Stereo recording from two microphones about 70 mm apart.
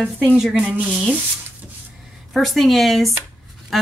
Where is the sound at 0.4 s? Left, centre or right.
Centre.